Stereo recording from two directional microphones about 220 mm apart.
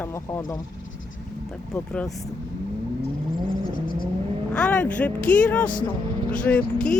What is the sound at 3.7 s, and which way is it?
Vehicle, 40° left (ahead or behind).